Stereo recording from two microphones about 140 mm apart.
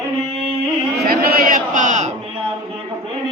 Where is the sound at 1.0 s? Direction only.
90° right; by 2.1 s 60° right (ahead or behind).